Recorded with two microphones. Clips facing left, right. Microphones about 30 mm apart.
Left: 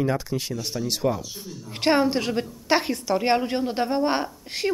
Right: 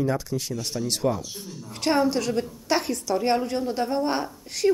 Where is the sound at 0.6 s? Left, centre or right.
Centre.